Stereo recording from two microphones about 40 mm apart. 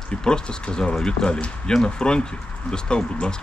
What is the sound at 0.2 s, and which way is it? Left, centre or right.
Speech, centre.